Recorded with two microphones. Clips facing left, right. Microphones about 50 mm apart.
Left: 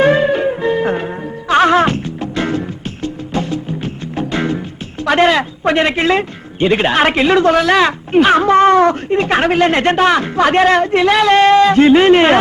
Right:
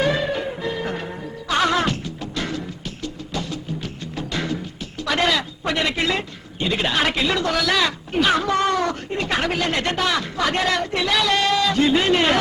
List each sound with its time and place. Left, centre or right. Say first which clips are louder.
0.0 s music: left 10 dB; left